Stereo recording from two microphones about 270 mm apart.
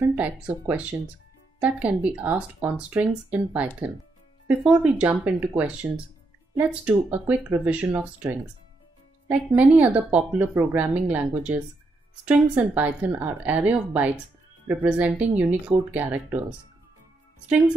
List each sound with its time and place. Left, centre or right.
0.1 s speech: centre